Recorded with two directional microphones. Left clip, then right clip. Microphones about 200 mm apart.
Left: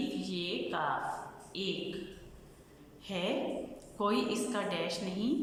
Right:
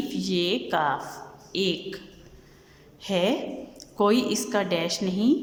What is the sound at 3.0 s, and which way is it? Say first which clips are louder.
A woman's voice: right 9 dB; 35° right (ahead or behind).